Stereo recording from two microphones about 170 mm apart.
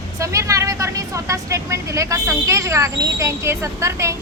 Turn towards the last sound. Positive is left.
turn(degrees=-15)  # may be behind; listen again after turning